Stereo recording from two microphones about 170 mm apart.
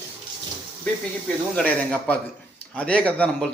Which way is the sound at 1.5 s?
10° left (ahead or behind).